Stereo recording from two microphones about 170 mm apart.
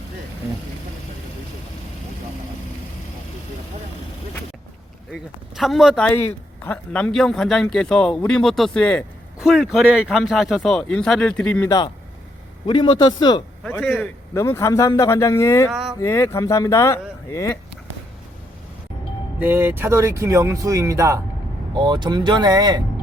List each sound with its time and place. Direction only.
5.1 s speech: centre (ahead or behind)
12.6 s speech: 25° left (ahead or behind)
13.7 s a man's voice: 5° left (ahead or behind)
15.7 s a sound: 5° right (ahead or behind)
16.0 s a man's voice: 15° left (ahead or behind)
19.4 s speech: 10° right (ahead or behind)